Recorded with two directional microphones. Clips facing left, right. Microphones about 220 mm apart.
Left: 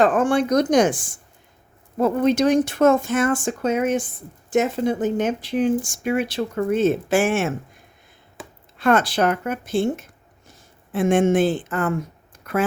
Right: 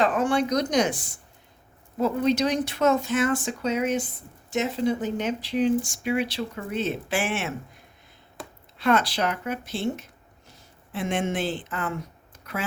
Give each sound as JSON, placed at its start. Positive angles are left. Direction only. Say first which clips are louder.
{"t": 0.0, "sound": "speech", "louder": "left 5 dB", "side_deg": 50}
{"t": 8.8, "sound": "speech", "louder": "left 5 dB", "side_deg": 50}